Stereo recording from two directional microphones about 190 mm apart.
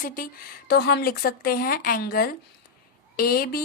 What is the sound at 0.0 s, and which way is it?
Speech, 50° left (ahead or behind).